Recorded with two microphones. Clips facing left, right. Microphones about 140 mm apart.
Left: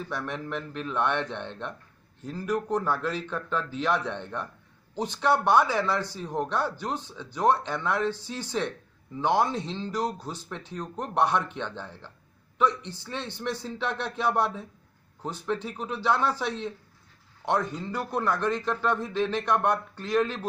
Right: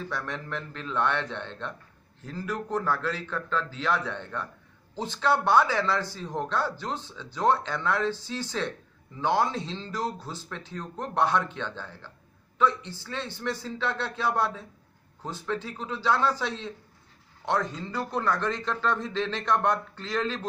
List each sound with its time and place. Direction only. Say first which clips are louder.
0.0 s speech: left 1 dB; 15° left (ahead or behind)
17.7 s speech: left 1 dB; 15° left (ahead or behind)